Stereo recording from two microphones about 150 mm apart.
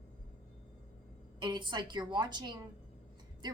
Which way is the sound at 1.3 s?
30° right (ahead or behind).